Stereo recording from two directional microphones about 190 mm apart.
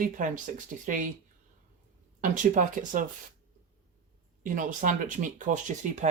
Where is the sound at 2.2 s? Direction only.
40° right (ahead or behind).